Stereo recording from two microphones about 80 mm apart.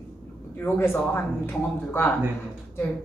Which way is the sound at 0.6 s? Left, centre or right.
Left.